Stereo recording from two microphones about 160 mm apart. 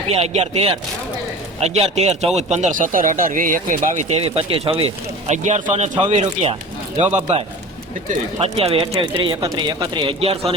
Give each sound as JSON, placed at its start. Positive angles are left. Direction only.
{"t": 0.1, "sound": "speech", "side_deg": -40}
{"t": 4.1, "sound": "speech", "side_deg": -35}
{"t": 5.3, "sound": "speech", "side_deg": -50}
{"t": 8.4, "sound": "speech", "side_deg": -35}